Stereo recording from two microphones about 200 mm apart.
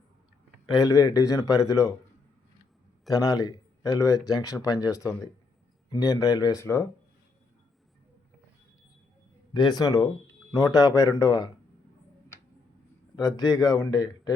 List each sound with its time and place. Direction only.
0.7 s a man's voice: 20° left (ahead or behind)
3.1 s a man's voice: 20° left (ahead or behind)
9.5 s a man's voice: 20° left (ahead or behind)
13.1 s speech: 20° left (ahead or behind)